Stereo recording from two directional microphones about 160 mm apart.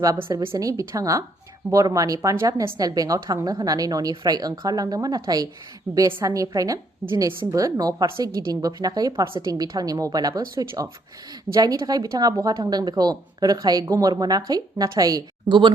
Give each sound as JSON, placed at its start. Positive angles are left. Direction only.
{"t": 0.0, "sound": "a woman's voice", "side_deg": -20}